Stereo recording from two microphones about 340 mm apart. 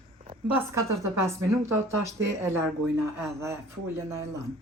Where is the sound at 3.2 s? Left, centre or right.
Centre.